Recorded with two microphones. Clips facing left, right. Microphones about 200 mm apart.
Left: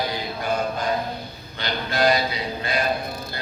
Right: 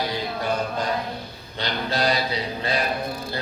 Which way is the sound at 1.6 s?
35° right (ahead or behind).